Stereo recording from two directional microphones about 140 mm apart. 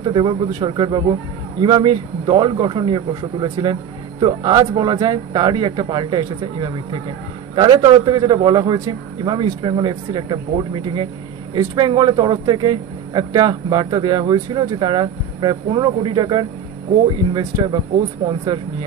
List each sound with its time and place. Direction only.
0.0 s a man's voice: 35° right (ahead or behind)